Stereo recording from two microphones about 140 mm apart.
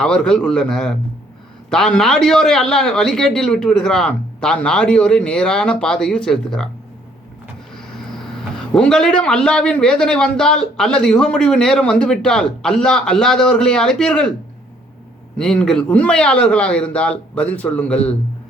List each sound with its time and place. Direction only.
0.0 s a man's voice: 5° left (ahead or behind)
8.5 s a man's voice: 5° left (ahead or behind)
15.4 s a man's voice: 5° left (ahead or behind)